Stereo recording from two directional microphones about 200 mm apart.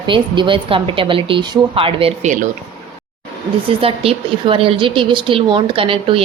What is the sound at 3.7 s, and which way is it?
A woman's voice, 30° right (ahead or behind).